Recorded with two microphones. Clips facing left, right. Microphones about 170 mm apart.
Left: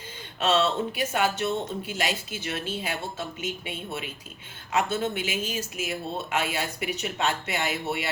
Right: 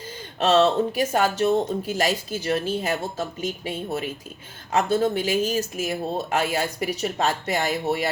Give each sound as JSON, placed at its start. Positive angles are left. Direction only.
{"t": 0.3, "sound": "speech", "side_deg": -40}